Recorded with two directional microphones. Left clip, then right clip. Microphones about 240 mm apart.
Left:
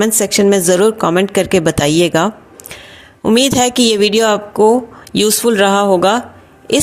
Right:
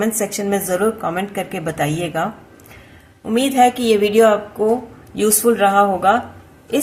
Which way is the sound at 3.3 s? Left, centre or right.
Left.